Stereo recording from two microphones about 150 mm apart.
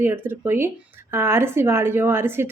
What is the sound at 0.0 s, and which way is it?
A woman's voice, 15° right (ahead or behind).